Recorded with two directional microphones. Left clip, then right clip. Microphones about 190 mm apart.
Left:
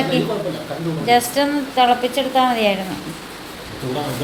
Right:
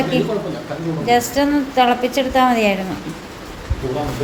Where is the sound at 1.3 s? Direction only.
5° right (ahead or behind).